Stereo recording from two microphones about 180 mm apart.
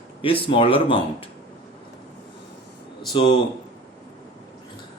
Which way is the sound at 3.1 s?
25° left (ahead or behind).